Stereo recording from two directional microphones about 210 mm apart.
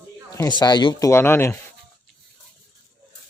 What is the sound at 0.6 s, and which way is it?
Speech, 20° left (ahead or behind).